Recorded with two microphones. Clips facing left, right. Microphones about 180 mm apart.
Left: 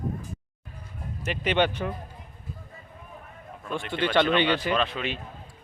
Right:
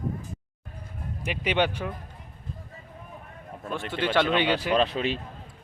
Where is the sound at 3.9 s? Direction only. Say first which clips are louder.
Left 1 dB; 5° right (ahead or behind).